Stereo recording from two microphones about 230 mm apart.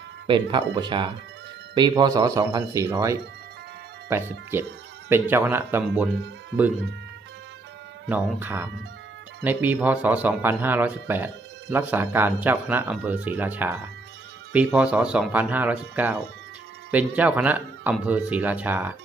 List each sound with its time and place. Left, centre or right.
0.3 s speech: right
5.0 s speech: centre
8.1 s speech: centre